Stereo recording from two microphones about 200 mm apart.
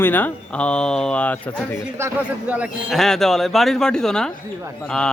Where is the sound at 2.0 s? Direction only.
10° right (ahead or behind).